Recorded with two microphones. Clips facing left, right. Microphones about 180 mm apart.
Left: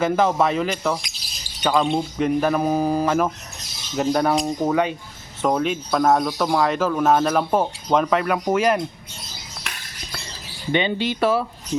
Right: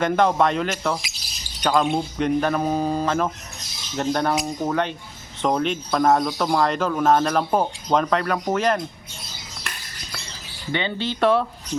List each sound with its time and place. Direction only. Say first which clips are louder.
0.0 s speech: even; 5° left (ahead or behind)
10.7 s speech: left 4 dB; 15° left (ahead or behind)
11.2 s speech: right 2 dB; 5° left (ahead or behind)